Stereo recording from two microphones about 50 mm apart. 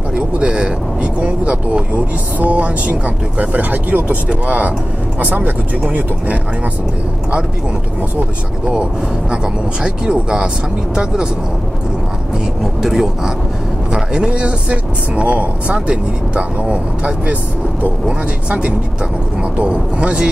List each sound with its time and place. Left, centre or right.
0.1 s speech: centre
9.3 s speech: centre
12.8 s speech: centre
13.9 s speech: centre